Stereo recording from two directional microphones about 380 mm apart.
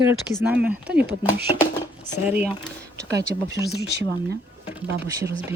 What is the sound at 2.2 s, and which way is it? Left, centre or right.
Speech, centre.